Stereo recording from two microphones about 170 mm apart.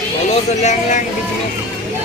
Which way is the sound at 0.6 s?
45° left (ahead or behind).